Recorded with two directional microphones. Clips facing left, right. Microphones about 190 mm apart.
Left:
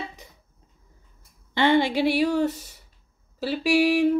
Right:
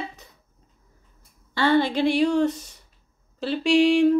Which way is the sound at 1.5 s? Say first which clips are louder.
Even; 15° left (ahead or behind).